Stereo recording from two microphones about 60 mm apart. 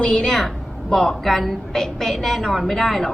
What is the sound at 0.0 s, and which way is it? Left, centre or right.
A woman's voice, centre.